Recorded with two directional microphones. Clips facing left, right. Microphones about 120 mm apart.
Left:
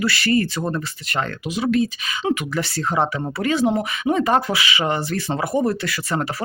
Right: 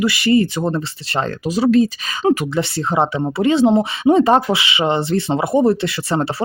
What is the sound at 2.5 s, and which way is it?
Speech, 20° right (ahead or behind).